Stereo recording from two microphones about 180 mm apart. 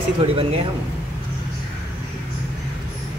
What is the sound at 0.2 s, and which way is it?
Speech, 30° right (ahead or behind).